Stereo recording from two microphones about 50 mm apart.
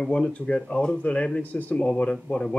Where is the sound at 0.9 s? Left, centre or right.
Left.